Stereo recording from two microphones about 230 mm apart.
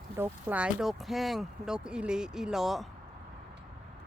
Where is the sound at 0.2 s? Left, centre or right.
Centre.